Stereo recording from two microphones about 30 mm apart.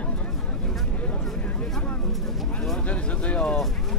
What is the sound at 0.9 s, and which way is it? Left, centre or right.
Vehicle, left.